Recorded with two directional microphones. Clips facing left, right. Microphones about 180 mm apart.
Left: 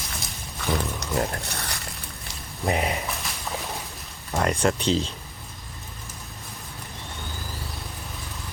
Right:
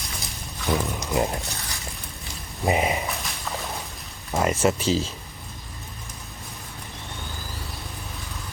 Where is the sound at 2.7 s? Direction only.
Centre (ahead or behind).